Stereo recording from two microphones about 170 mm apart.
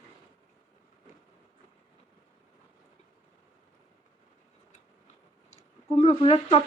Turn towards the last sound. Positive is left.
turn(degrees=35)  # may be behind; listen again after turning